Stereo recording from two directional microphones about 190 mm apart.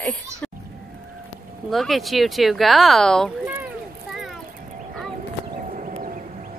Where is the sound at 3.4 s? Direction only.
10° right (ahead or behind).